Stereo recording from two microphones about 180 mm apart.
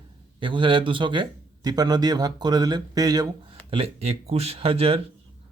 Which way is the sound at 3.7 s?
30° right (ahead or behind).